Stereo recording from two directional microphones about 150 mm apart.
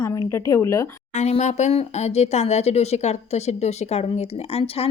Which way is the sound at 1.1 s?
50° left (ahead or behind).